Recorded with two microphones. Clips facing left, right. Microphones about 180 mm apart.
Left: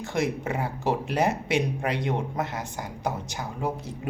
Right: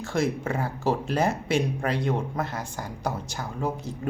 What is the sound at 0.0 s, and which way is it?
Speech, 15° left (ahead or behind).